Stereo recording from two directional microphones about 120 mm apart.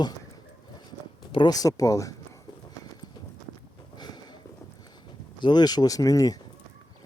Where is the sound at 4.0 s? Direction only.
35° left (ahead or behind).